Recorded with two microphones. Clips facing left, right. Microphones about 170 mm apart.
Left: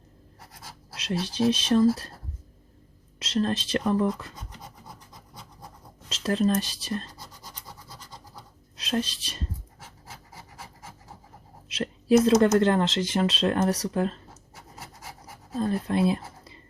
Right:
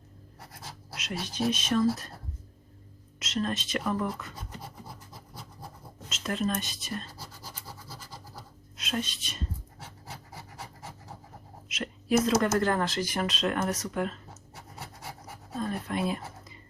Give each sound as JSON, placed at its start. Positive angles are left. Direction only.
{"t": 0.9, "sound": "speech", "side_deg": 30}
{"t": 3.2, "sound": "speech", "side_deg": 30}
{"t": 5.1, "sound": "scratch", "side_deg": -5}
{"t": 6.1, "sound": "speech", "side_deg": 35}
{"t": 7.1, "sound": "scratch", "side_deg": -10}
{"t": 8.8, "sound": "a woman's voice", "side_deg": 35}
{"t": 11.7, "sound": "a sound", "side_deg": 30}
{"t": 12.5, "sound": "speech", "side_deg": 25}
{"t": 15.5, "sound": "speech", "side_deg": 30}